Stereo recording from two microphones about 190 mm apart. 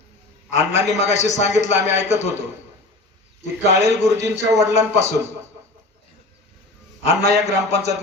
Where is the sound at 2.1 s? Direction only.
35° left (ahead or behind).